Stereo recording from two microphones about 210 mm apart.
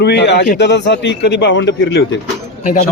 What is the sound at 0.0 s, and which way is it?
A man's voice, 55° left (ahead or behind).